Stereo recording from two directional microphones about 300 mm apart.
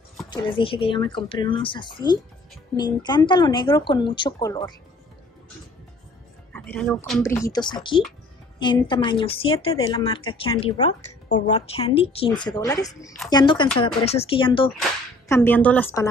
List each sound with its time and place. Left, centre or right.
0.3 s a woman's voice: centre
6.5 s a woman's voice: centre
14.8 s whip: centre